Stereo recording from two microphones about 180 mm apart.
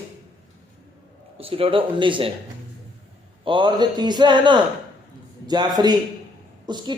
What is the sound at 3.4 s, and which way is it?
Speech, 25° right (ahead or behind).